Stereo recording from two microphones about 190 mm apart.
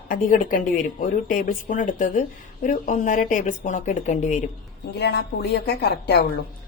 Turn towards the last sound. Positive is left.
turn(degrees=60)  # may be behind; listen again after turning